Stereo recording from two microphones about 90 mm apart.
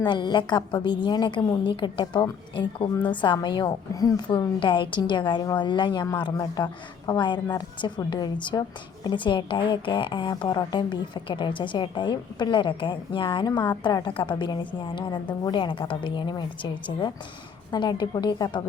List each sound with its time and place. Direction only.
0.0 s a woman's voice: 55° left (ahead or behind)
6.3 s a woman's voice: 50° left (ahead or behind); by 13.4 s 65° left (ahead or behind)
13.4 s a woman's voice: 55° left (ahead or behind)
17.7 s speech: 55° left (ahead or behind)